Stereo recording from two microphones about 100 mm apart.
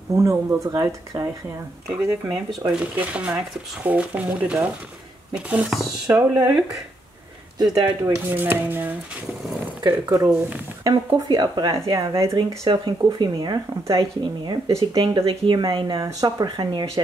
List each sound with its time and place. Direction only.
0.1 s speech: 30° right (ahead or behind)
2.7 s speech: 10° right (ahead or behind)
6.0 s speech: 30° right (ahead or behind)
7.5 s speech: 35° right (ahead or behind)
7.8 s speech: 20° right (ahead or behind)
10.0 s speech: 40° right (ahead or behind)
11.7 s speech: 30° right (ahead or behind)
12.4 s speech: 55° right (ahead or behind)
15.0 s speech: 60° right (ahead or behind)
16.0 s speech: 35° right (ahead or behind)